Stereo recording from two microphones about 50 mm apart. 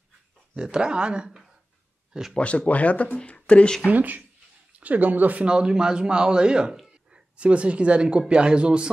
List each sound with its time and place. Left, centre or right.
0.6 s speech: centre
2.3 s speech: left
3.9 s speech: right
5.4 s speech: centre